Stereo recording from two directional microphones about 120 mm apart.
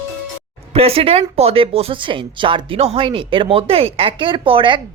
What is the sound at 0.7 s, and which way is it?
Speech, 55° right (ahead or behind).